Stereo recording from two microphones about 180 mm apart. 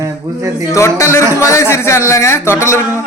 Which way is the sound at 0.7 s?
15° left (ahead or behind).